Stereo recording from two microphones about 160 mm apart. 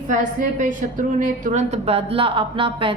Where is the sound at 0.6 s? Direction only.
55° right (ahead or behind).